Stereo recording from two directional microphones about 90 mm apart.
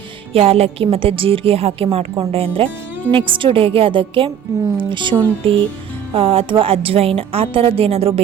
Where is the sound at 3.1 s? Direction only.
75° right (ahead or behind).